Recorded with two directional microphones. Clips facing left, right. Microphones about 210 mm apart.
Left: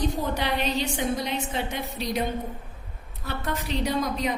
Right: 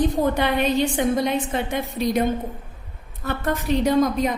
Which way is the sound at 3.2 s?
50° right (ahead or behind).